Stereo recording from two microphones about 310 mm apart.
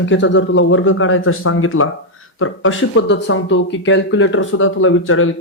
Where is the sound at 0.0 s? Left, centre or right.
Left.